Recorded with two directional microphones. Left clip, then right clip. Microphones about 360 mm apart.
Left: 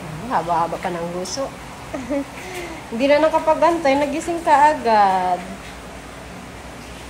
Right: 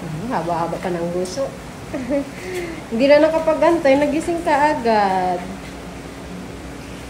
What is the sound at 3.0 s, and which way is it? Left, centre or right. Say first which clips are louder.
A woman's voice: right 2 dB; centre.